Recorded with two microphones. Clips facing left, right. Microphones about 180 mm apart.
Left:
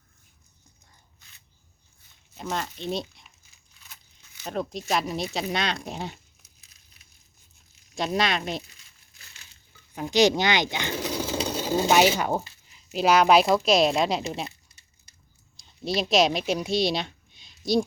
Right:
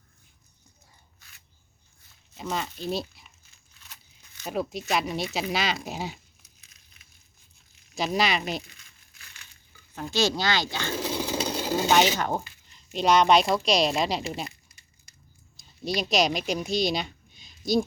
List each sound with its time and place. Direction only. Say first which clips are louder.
2.3 s speech: even; centre (ahead or behind)
4.4 s speech: even; 5° right (ahead or behind)
7.9 s speech: even; centre (ahead or behind)
9.9 s speech: left 6 dB; 15° left (ahead or behind)
11.0 s a sound: even; centre (ahead or behind)
11.4 s sewing machine: left 1 dB; 10° right (ahead or behind)
11.8 s speech: left 2 dB; 10° left (ahead or behind)
16.0 s a woman's voice: left 3 dB; centre (ahead or behind)